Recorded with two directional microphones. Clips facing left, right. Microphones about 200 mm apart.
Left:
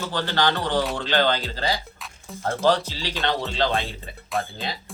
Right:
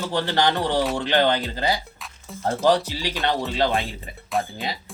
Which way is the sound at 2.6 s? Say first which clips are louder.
Right 1 dB; 15° right (ahead or behind).